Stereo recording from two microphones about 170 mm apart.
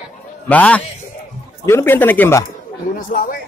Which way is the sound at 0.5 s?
10° left (ahead or behind).